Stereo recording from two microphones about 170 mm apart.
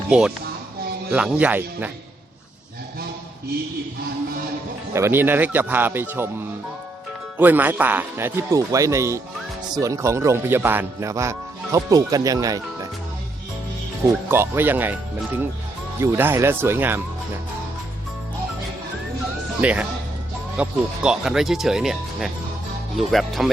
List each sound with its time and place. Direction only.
0.1 s speech: 5° right (ahead or behind)
4.9 s speech: 15° right (ahead or behind)
7.3 s speech: 10° right (ahead or behind)
14.3 s speech: 15° right (ahead or behind)
16.0 s speech: 15° right (ahead or behind)
19.6 s speech: 10° right (ahead or behind)